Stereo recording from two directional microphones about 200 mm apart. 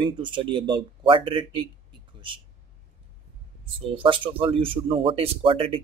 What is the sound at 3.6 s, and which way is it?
Speech, 25° right (ahead or behind).